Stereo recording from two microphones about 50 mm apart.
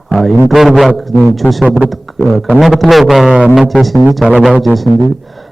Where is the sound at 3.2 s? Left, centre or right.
Centre.